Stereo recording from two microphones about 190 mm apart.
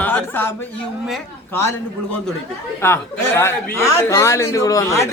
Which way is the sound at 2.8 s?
15° left (ahead or behind).